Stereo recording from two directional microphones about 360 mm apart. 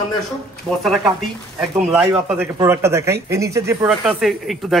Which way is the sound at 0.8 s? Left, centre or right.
Centre.